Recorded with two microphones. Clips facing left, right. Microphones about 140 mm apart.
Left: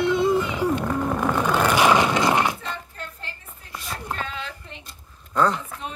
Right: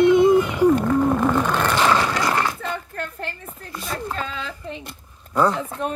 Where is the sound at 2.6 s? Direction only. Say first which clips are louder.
Right 6 dB; 60° right (ahead or behind).